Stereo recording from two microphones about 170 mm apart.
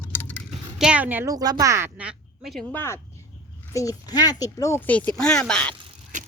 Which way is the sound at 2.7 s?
15° left (ahead or behind).